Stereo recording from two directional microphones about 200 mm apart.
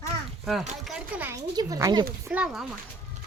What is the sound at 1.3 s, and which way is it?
Speech, 15° right (ahead or behind).